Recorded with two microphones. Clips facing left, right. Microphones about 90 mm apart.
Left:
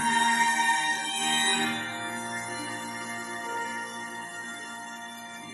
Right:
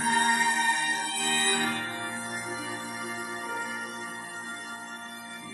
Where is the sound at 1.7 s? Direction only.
5° right (ahead or behind).